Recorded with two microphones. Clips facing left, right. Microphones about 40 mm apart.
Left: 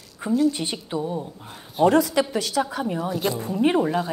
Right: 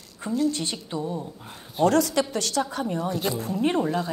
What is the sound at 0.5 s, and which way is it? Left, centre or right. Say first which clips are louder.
Speech: left 3 dB; centre.